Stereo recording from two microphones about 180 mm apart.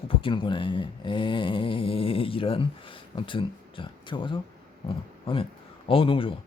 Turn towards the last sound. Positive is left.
turn(degrees=30)  # may be behind; listen again after turning